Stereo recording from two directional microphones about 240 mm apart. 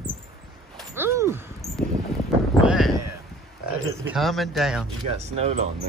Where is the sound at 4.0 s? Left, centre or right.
Centre.